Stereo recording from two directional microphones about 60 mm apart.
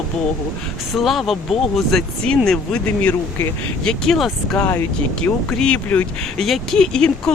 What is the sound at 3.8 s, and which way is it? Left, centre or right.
Speech, centre.